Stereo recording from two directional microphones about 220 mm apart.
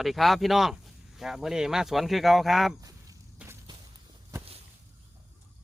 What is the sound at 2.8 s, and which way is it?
Chop, 15° right (ahead or behind).